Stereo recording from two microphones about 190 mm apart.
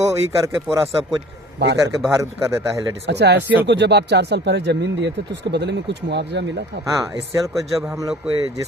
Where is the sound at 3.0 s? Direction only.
60° right (ahead or behind).